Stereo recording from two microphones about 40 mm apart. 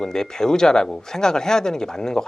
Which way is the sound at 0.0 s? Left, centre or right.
Centre.